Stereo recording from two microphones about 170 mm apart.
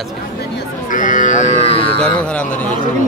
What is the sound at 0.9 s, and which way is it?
Speech, 50° left (ahead or behind).